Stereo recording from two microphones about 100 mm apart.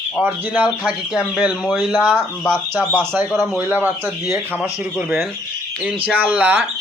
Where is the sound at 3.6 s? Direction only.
20° right (ahead or behind).